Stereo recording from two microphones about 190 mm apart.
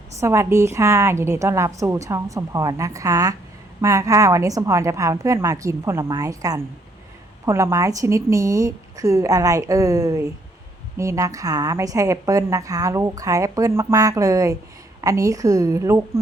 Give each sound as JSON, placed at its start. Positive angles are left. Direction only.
{"t": 0.2, "sound": "a woman's voice", "side_deg": -15}